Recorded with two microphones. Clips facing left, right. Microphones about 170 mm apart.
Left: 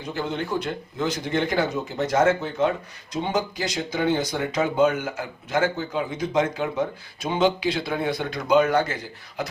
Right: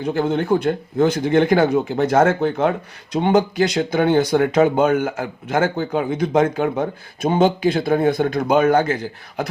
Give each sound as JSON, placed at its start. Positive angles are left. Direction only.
{"t": 0.0, "sound": "speech", "side_deg": -50}